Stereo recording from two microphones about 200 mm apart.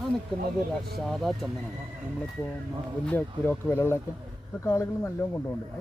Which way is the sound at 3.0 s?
10° left (ahead or behind).